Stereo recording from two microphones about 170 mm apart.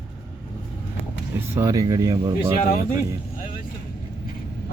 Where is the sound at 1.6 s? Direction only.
20° right (ahead or behind).